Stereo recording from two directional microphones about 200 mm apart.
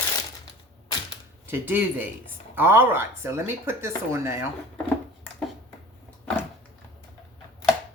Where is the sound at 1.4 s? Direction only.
10° right (ahead or behind).